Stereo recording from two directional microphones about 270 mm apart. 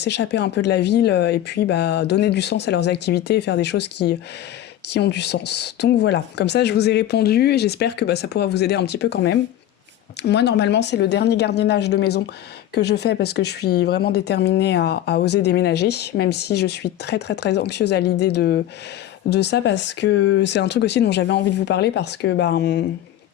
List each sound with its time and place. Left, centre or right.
0.0 s speech: left